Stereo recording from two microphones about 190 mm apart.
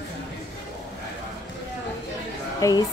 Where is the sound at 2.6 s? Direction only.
15° left (ahead or behind).